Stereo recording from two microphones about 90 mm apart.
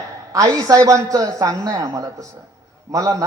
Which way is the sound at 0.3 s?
40° right (ahead or behind).